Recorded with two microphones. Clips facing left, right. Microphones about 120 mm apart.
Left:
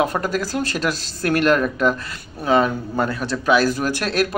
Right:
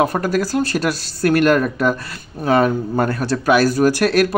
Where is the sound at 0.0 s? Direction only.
40° right (ahead or behind).